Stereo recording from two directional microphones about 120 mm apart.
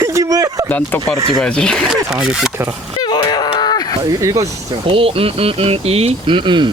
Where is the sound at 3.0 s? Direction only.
35° left (ahead or behind).